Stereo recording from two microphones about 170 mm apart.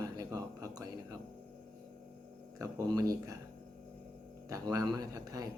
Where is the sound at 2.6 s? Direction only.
20° right (ahead or behind).